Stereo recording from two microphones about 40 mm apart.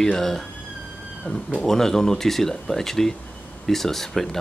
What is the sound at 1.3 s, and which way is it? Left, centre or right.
Speech, left.